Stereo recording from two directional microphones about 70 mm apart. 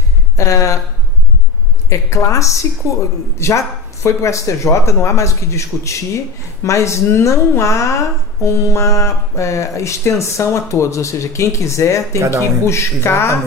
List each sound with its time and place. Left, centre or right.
0.5 s speech: left
1.9 s a woman's voice: left
12.2 s speech: right
12.6 s a woman's voice: left